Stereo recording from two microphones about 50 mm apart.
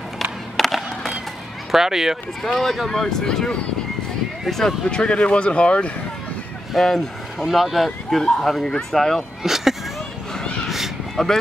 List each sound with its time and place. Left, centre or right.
0.2 s skateboard: centre
1.7 s speech: centre
2.4 s speech: centre
4.8 s speech: centre
6.7 s speech: centre
9.4 s a sound: centre
11.2 s speech: centre